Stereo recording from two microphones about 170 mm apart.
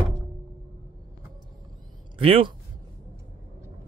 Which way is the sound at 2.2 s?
30° right (ahead or behind).